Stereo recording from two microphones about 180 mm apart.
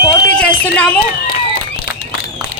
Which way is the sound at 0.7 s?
5° left (ahead or behind).